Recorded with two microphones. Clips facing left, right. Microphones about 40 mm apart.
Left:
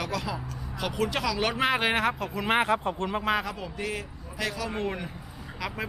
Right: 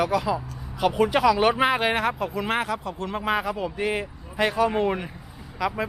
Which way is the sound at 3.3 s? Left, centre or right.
Centre.